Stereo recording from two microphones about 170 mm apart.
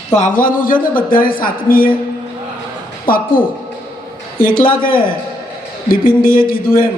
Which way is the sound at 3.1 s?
55° left (ahead or behind).